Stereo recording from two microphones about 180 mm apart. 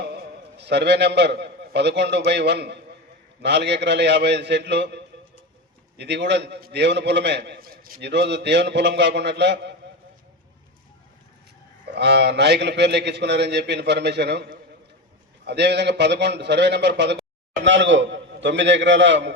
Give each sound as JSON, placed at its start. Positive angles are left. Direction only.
{"t": 0.1, "sound": "a man's voice", "side_deg": -70}
{"t": 6.0, "sound": "a man's voice", "side_deg": -70}
{"t": 11.9, "sound": "a man's voice", "side_deg": -70}
{"t": 15.4, "sound": "a man's voice", "side_deg": -70}
{"t": 17.6, "sound": "a man's voice", "side_deg": -90}